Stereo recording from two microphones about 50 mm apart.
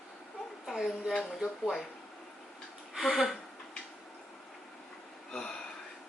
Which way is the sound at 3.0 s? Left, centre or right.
Centre.